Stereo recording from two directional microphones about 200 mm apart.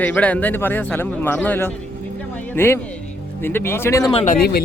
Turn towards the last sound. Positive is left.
turn(degrees=50)  # may be behind; listen again after turning